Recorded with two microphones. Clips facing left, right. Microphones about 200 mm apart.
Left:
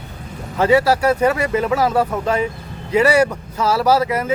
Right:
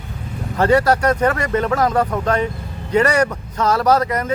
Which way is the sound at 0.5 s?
5° left (ahead or behind).